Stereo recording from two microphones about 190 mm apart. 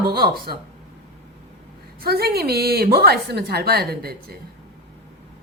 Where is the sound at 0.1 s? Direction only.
55° right (ahead or behind).